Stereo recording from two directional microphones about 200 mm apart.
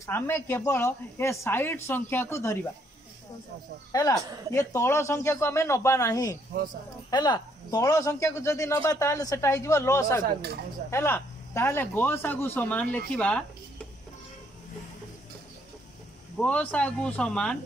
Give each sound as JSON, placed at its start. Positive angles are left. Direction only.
{"t": 0.0, "sound": "a man's voice", "side_deg": 10}
{"t": 3.9, "sound": "a man's voice", "side_deg": 20}
{"t": 16.3, "sound": "speech", "side_deg": 5}